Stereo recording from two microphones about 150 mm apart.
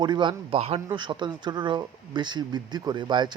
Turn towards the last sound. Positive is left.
turn(degrees=-30)  # may be behind; listen again after turning